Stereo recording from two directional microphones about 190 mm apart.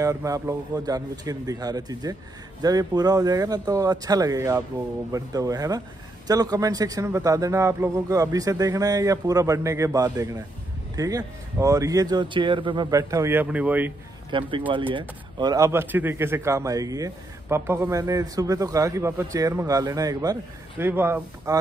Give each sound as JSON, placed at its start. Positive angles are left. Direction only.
{"t": 0.0, "sound": "speech", "side_deg": -15}
{"t": 14.3, "sound": "speech", "side_deg": -25}